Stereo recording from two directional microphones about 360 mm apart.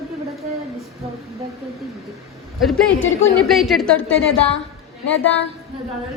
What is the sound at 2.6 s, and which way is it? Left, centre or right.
Speech, centre.